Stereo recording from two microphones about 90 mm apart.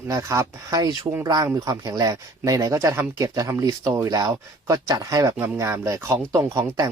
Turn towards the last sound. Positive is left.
turn(degrees=-40)  # may be behind; listen again after turning